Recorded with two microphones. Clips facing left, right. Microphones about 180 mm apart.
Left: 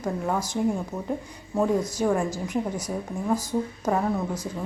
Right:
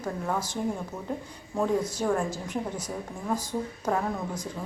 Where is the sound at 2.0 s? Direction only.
10° left (ahead or behind).